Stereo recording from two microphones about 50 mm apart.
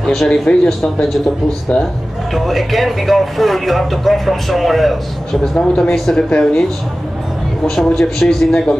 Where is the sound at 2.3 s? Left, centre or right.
Centre.